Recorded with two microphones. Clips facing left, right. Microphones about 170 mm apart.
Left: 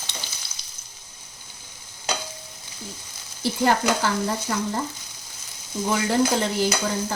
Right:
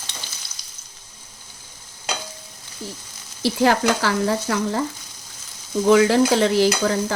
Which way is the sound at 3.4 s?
90° right.